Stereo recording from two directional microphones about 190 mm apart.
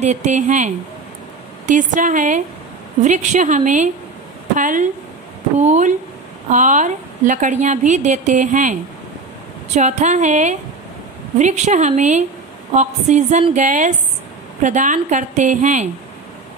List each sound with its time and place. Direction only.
0.0 s a woman's voice: 40° right (ahead or behind)
9.8 s a woman's voice: 40° right (ahead or behind)